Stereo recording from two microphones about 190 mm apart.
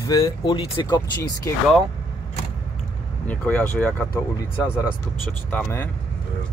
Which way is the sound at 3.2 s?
10° left (ahead or behind).